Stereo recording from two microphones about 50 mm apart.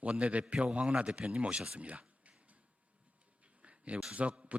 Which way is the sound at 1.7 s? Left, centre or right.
Right.